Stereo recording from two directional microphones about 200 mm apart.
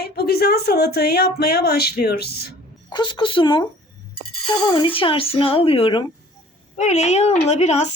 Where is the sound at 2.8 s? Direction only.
25° left (ahead or behind).